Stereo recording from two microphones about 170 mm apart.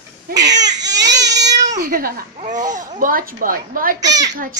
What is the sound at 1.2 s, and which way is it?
Cat, 20° right (ahead or behind).